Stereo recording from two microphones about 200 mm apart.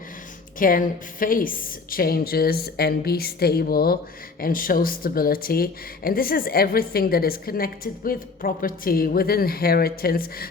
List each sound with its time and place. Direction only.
0.6 s speech: 45° left (ahead or behind)